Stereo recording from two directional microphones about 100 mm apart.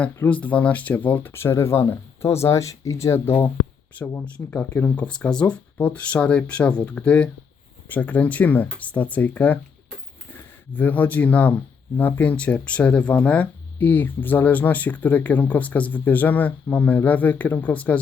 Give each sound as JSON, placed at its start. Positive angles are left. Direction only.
{"t": 0.3, "sound": "speech", "side_deg": 15}
{"t": 10.8, "sound": "speech", "side_deg": 15}